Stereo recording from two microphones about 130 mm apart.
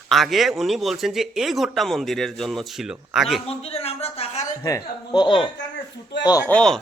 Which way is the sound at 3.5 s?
50° left (ahead or behind).